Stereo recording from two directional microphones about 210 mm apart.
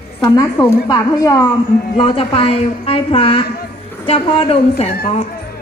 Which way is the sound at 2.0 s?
25° left (ahead or behind).